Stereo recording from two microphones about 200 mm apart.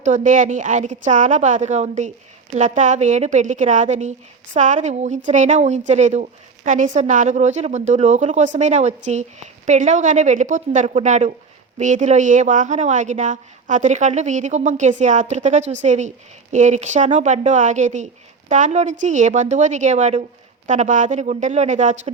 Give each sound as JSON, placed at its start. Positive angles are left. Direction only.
{"t": 0.0, "sound": "speech", "side_deg": -40}